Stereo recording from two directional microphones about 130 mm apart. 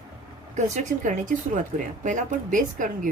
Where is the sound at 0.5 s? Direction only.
65° right (ahead or behind).